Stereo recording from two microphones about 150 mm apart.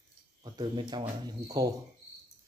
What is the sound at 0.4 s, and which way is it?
Speech, 30° right (ahead or behind).